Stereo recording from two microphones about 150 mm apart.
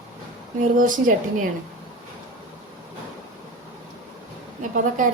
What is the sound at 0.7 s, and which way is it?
Speech, 65° right (ahead or behind).